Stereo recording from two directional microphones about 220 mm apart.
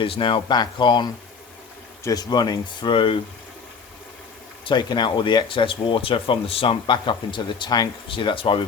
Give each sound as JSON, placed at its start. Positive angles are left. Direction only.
{"t": 0.0, "sound": "speech", "side_deg": 25}
{"t": 4.6, "sound": "speech", "side_deg": 20}